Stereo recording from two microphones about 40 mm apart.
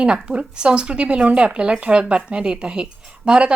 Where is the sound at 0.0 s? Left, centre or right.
Right.